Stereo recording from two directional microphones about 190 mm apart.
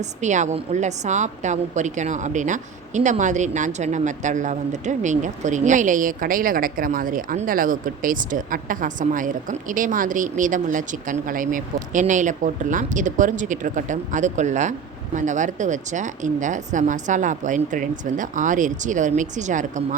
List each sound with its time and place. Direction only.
0.0 s a woman's voice: 40° right (ahead or behind)